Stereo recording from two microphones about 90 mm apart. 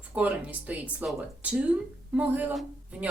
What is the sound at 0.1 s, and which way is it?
Speech, 15° right (ahead or behind).